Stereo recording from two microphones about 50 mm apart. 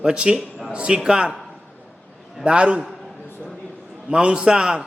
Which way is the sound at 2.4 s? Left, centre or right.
Right.